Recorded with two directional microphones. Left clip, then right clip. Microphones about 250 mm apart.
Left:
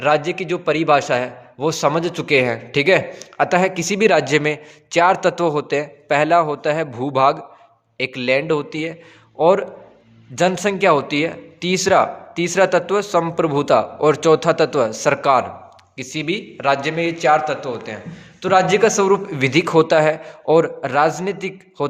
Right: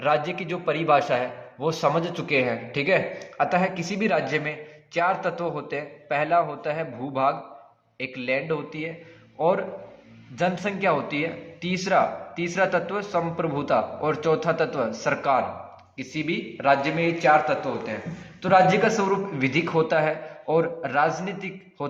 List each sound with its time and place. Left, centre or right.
0.0 s a man's voice: left